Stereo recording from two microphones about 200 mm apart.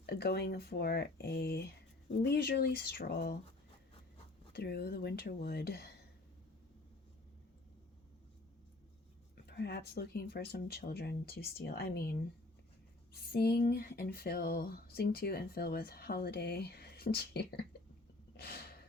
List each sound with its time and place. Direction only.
0.0 s speech: 55° left (ahead or behind)
4.5 s speech: 50° left (ahead or behind)
9.5 s speech: 55° left (ahead or behind)
13.3 s speech: 50° left (ahead or behind)
18.3 s a sound: 50° left (ahead or behind)